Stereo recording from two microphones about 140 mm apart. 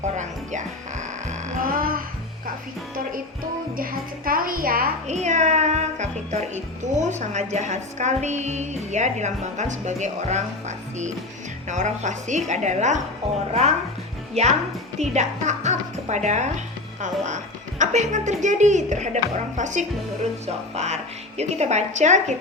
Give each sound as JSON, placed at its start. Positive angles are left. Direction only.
{"t": 0.0, "sound": "music", "side_deg": -60}
{"t": 3.8, "sound": "a woman's voice", "side_deg": -90}
{"t": 5.0, "sound": "speech", "side_deg": -60}
{"t": 14.4, "sound": "a woman's voice", "side_deg": -50}